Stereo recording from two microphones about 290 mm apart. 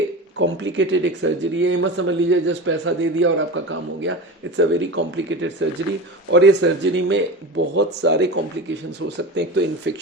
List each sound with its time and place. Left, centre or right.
0.3 s a man's voice: right